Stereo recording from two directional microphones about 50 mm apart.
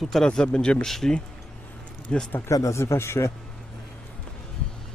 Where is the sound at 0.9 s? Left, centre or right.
Centre.